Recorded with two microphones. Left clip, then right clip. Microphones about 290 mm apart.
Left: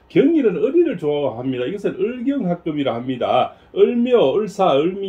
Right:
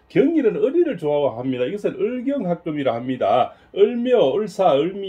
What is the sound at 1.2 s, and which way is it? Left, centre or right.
Speech, centre.